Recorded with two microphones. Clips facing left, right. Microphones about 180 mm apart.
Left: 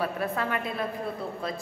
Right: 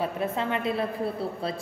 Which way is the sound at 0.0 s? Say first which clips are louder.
Right 1 dB; 25° right (ahead or behind).